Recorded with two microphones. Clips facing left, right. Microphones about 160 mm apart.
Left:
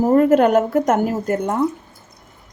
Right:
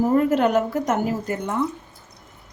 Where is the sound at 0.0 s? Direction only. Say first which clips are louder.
Left 5 dB; 45° left (ahead or behind).